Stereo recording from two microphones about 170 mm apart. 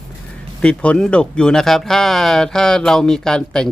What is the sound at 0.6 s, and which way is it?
Speech, 5° left (ahead or behind).